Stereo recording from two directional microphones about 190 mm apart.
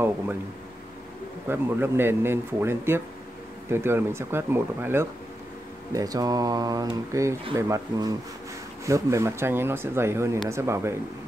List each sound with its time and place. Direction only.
1.5 s speech: 10° right (ahead or behind)